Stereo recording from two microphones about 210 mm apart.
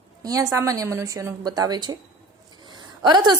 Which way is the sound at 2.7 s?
20° right (ahead or behind).